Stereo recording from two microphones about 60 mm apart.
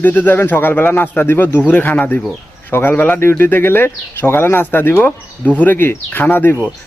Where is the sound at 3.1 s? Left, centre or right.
Left.